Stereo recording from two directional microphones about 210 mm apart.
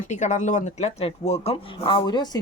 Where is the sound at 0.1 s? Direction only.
35° left (ahead or behind).